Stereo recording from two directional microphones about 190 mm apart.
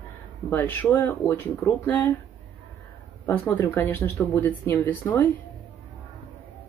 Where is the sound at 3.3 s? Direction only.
10° left (ahead or behind).